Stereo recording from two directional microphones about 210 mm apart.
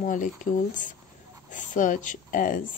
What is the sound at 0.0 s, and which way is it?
A woman's voice, 40° left (ahead or behind).